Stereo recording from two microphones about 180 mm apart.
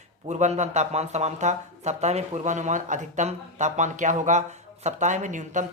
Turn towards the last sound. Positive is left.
turn(degrees=-45)  # may be behind; listen again after turning